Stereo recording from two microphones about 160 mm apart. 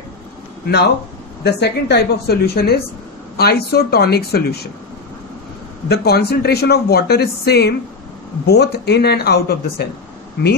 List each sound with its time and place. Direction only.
0.7 s speech: 90° left
5.9 s speech: 85° left